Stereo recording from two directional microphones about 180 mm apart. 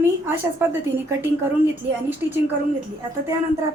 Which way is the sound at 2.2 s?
15° right (ahead or behind).